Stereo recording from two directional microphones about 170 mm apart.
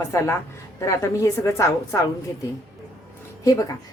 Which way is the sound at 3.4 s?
20° left (ahead or behind).